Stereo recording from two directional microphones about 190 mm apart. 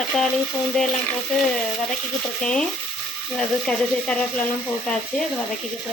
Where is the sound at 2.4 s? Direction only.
5° left (ahead or behind).